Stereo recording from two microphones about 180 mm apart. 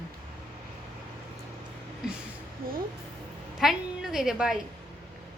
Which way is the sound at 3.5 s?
Centre (ahead or behind).